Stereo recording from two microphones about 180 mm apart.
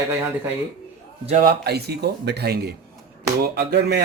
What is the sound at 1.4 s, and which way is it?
Speech, 60° right (ahead or behind).